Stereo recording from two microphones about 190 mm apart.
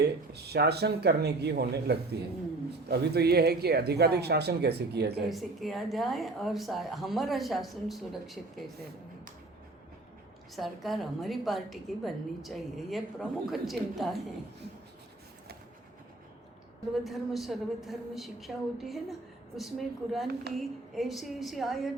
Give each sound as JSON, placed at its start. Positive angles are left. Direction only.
{"t": 0.0, "sound": "speech", "side_deg": -60}
{"t": 5.3, "sound": "a woman's voice", "side_deg": 0}
{"t": 10.5, "sound": "a woman's voice", "side_deg": 0}
{"t": 17.1, "sound": "a woman's voice", "side_deg": 0}